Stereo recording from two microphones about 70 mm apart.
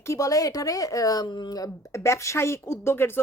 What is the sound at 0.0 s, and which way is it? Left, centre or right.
Speech, left.